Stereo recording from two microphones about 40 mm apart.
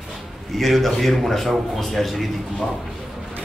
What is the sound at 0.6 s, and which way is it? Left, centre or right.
Speech, centre.